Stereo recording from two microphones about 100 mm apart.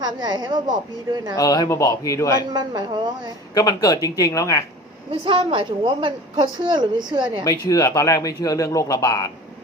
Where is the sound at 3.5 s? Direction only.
40° left (ahead or behind).